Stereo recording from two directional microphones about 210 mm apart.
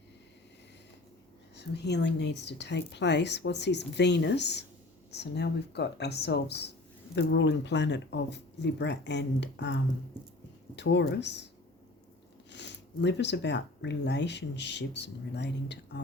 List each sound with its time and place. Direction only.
1.5 s speech: 55° left (ahead or behind)
12.5 s speech: 55° left (ahead or behind)